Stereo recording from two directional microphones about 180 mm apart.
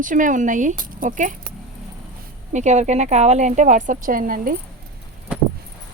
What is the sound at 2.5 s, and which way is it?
Speech, 40° right (ahead or behind).